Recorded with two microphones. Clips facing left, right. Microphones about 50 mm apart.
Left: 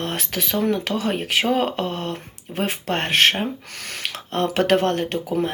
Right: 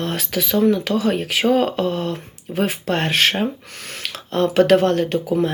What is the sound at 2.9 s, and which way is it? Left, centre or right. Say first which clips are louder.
Speech: left 1 dB; left.